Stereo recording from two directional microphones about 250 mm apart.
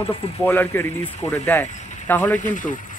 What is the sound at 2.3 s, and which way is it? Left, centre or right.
Speech, left.